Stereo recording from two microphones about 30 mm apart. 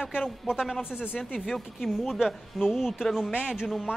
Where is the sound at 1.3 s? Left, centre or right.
Centre.